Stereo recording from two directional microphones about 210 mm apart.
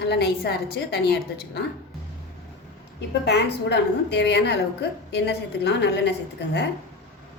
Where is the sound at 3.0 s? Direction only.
55° left (ahead or behind).